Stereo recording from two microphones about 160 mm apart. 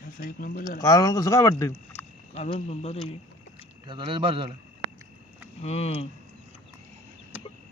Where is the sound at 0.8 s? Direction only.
20° left (ahead or behind).